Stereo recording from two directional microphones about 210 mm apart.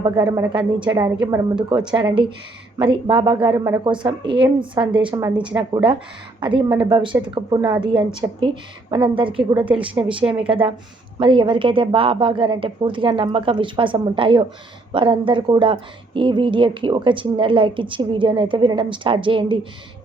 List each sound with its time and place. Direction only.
0.0 s speech: 20° right (ahead or behind)